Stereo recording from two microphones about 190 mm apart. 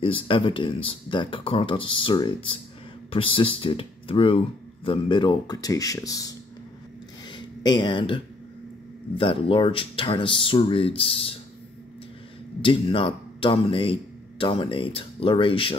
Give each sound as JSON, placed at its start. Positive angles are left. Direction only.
{"t": 0.0, "sound": "speech", "side_deg": 25}
{"t": 7.2, "sound": "a sound", "side_deg": 25}
{"t": 9.1, "sound": "speech", "side_deg": 25}
{"t": 12.6, "sound": "speech", "side_deg": 30}